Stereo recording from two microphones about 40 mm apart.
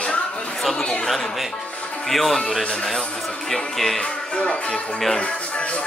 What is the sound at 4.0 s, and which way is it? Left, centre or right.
Speech, left.